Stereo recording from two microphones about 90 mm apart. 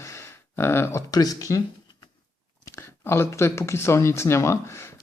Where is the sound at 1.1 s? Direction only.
45° left (ahead or behind).